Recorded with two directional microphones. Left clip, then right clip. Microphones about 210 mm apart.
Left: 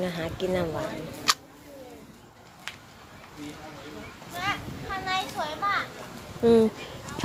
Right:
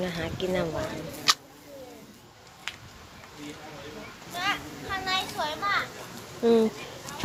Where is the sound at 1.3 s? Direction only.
50° left (ahead or behind).